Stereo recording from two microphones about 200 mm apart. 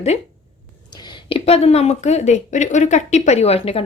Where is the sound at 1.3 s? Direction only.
30° left (ahead or behind).